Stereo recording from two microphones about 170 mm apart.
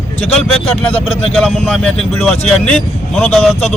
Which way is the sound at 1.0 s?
35° left (ahead or behind).